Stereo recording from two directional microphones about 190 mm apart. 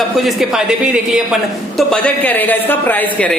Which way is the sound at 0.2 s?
Centre (ahead or behind).